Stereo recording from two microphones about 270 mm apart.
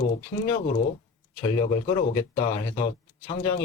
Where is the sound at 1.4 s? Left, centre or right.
Centre.